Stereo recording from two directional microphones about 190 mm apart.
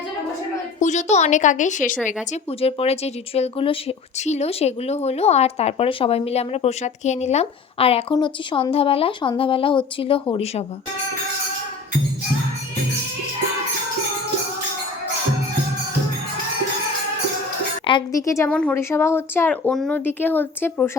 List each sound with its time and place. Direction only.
0.8 s speech: 40° left (ahead or behind)
2.6 s speech: 30° left (ahead or behind)
17.8 s a woman's voice: 20° left (ahead or behind)